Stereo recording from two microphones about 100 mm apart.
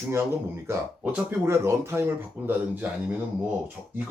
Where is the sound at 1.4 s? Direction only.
25° right (ahead or behind).